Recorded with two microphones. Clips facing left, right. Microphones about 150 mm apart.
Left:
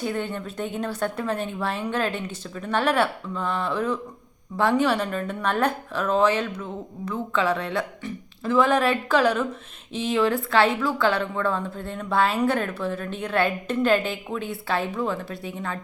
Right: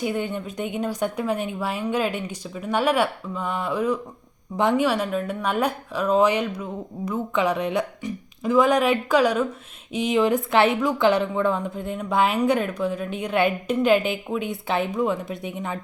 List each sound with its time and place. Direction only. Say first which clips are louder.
0.0 s a woman's voice: right 2 dB; 15° right (ahead or behind)